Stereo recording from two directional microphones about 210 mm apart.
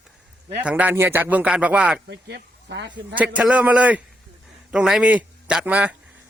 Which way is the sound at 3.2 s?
5° right (ahead or behind).